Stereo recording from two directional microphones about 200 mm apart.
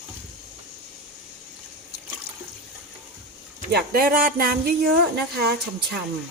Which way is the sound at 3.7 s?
50° right (ahead or behind).